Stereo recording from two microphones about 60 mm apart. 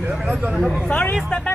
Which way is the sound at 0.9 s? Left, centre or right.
Left.